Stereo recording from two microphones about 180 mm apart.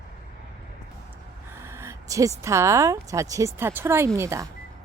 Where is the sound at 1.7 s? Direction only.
15° right (ahead or behind).